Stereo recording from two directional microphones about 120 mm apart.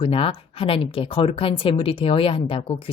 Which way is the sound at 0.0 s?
50° left (ahead or behind).